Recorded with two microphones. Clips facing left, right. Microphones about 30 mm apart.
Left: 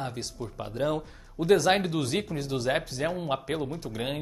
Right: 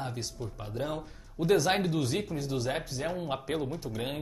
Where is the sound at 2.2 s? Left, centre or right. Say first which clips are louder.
Left 2 dB; left.